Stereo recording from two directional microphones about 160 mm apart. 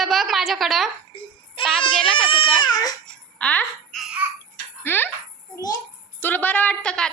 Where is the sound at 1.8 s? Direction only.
30° left (ahead or behind).